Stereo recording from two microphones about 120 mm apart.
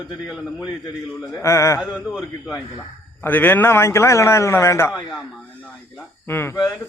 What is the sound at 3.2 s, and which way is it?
A man's voice, 15° left (ahead or behind).